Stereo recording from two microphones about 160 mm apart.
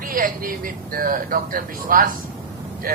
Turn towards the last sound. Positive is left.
turn(degrees=-65)  # may be behind; listen again after turning